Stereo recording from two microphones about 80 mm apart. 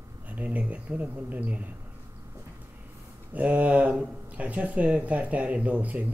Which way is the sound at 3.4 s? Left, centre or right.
Centre.